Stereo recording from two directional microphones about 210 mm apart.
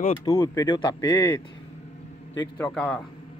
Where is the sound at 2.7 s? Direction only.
5° left (ahead or behind).